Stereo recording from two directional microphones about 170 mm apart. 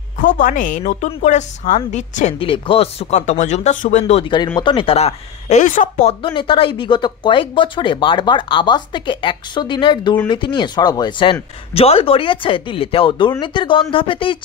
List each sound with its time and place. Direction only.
0.2 s a woman's voice: 55° left (ahead or behind)
2.4 s speech: 30° left (ahead or behind)
4.6 s speech: 30° left (ahead or behind); by 6.1 s 45° left (ahead or behind)
6.2 s speech: 30° left (ahead or behind)